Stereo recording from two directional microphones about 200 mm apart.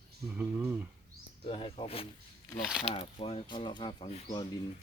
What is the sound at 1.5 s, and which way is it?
Speech, 25° left (ahead or behind).